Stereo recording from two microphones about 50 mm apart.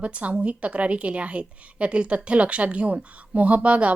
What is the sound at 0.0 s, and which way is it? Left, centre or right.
A woman's voice, right.